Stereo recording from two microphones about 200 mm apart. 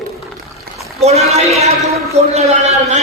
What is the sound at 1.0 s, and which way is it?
A man's voice, 30° right (ahead or behind).